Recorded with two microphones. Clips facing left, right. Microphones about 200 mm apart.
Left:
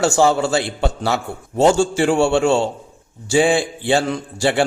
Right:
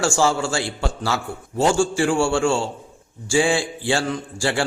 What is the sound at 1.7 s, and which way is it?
A man's voice, 20° left (ahead or behind).